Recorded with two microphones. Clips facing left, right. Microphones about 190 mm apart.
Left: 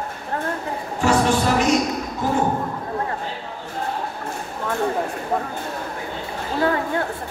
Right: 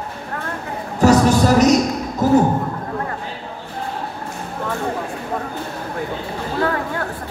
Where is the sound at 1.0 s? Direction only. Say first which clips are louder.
Right 5 dB; 40° right (ahead or behind).